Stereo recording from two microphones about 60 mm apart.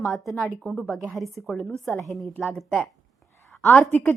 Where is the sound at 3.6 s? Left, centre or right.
Left.